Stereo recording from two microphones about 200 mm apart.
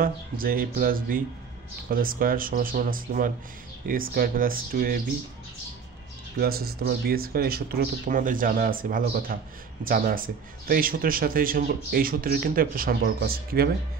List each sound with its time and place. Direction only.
0.0 s speech: 45° right (ahead or behind)
6.3 s speech: 50° right (ahead or behind)